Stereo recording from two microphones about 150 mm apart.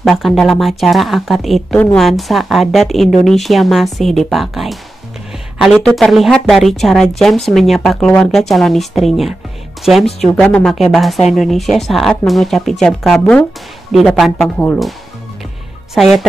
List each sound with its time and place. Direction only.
0.0 s speech: centre (ahead or behind)
15.9 s speech: centre (ahead or behind)